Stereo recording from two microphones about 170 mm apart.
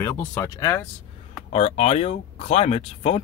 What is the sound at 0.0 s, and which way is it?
Speech, 15° left (ahead or behind).